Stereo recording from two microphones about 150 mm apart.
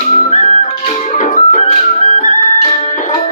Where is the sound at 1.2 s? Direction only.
55° left (ahead or behind).